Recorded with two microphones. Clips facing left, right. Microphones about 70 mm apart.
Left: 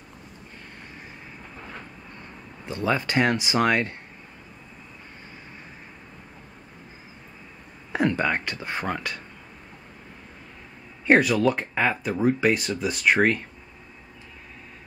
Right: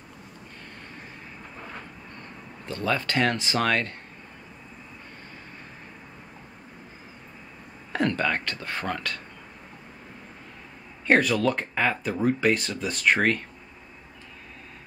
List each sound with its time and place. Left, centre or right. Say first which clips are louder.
2.6 s speech: left 2 dB; centre
7.9 s speech: left 2 dB; centre
11.1 s speech: left 2 dB; centre